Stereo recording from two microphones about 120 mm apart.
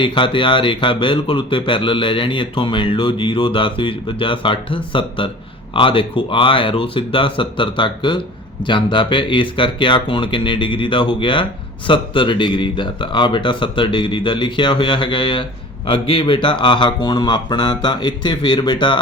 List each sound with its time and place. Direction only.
0.0 s speech: 45° left (ahead or behind)